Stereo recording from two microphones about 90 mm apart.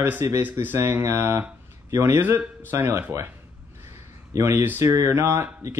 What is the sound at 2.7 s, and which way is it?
Speech, 35° right (ahead or behind).